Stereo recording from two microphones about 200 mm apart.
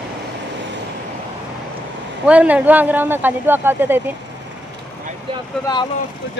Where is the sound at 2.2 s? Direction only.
5° right (ahead or behind).